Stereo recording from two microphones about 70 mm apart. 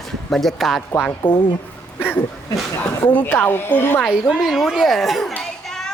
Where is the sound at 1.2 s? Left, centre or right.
Left.